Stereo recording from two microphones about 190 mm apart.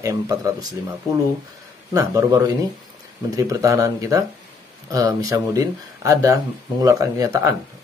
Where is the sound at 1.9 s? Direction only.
15° right (ahead or behind).